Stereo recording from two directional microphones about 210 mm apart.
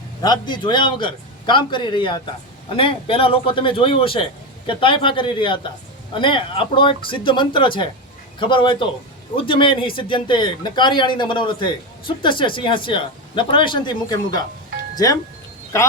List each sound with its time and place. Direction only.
0.2 s speech: 20° left (ahead or behind)